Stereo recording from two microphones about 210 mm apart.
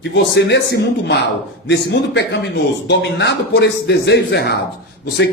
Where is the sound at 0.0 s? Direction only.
55° left (ahead or behind).